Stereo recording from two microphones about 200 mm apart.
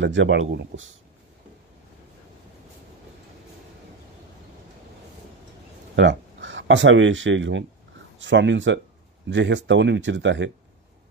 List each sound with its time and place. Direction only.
0.0 s speech: 65° right (ahead or behind)
5.9 s speech: 65° right (ahead or behind)